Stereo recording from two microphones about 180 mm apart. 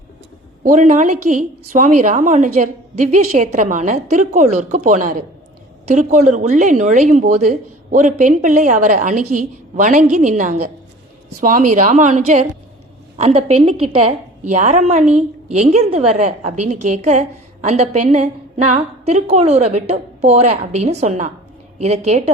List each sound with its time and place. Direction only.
0.6 s a woman's voice: 45° right (ahead or behind)